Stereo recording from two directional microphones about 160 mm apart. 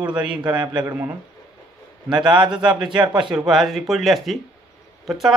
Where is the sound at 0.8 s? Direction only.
15° right (ahead or behind).